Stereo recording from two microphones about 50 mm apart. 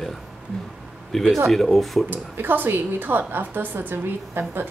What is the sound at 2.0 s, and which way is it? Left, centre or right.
A woman's voice, right.